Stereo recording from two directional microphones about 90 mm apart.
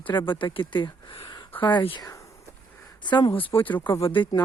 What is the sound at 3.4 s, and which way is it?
Speech, 80° left.